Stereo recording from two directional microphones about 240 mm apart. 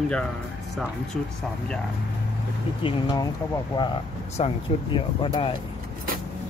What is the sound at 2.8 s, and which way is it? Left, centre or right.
Speech, left.